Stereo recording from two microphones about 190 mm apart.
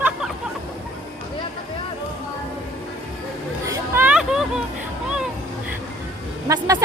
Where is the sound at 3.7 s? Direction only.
10° right (ahead or behind).